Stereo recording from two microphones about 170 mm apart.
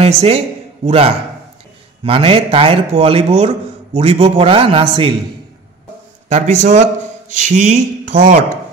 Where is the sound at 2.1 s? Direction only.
35° right (ahead or behind).